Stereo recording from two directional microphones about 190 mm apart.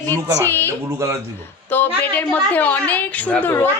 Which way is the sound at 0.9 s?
15° right (ahead or behind).